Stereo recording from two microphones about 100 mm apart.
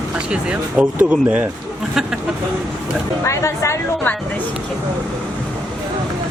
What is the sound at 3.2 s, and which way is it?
Speech, 30° left (ahead or behind).